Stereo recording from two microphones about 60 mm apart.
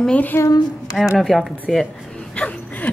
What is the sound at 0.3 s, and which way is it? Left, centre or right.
Speech, left.